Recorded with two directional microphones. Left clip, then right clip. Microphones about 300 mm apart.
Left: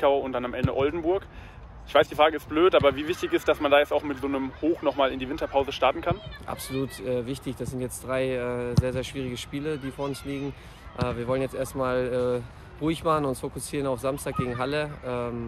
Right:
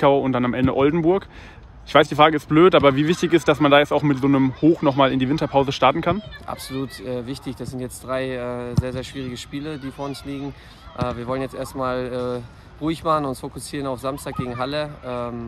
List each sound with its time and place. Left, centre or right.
0.0 s speech: right
6.8 s speech: centre